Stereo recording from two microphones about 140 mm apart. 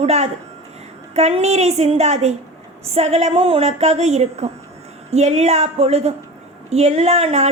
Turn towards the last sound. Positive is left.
turn(degrees=-50)  # may be behind; listen again after turning